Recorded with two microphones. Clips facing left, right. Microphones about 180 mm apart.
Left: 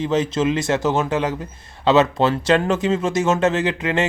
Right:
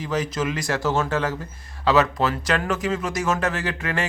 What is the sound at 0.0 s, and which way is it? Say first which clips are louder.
A man's voice: left 6 dB; 25° left (ahead or behind).